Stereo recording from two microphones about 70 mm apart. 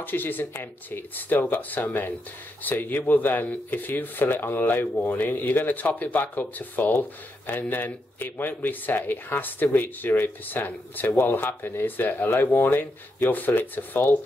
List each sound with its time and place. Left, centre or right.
0.0 s speech: left